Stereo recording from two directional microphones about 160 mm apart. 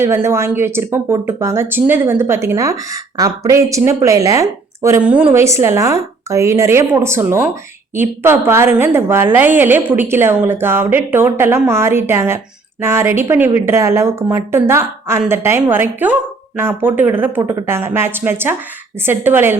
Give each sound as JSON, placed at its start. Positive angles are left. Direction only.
{"t": 0.0, "sound": "speech", "side_deg": -15}